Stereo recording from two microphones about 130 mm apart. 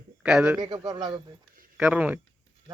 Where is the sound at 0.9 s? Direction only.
30° right (ahead or behind).